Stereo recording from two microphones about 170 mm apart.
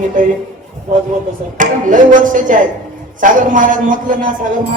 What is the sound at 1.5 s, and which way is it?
A man's voice, 50° right (ahead or behind).